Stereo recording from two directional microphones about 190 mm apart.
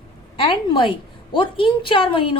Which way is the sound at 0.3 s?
25° left (ahead or behind).